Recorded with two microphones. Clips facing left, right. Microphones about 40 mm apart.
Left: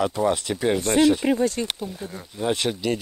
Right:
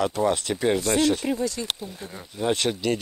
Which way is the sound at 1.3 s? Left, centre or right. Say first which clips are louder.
Left 4 dB; left.